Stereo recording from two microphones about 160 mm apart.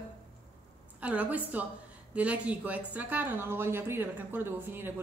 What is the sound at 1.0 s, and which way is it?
A woman's voice, 10° right (ahead or behind).